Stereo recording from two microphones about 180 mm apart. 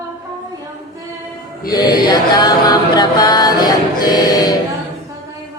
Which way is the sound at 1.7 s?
25° left (ahead or behind).